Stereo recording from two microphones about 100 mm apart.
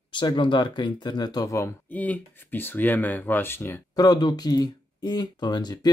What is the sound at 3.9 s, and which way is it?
Speech, 40° left (ahead or behind).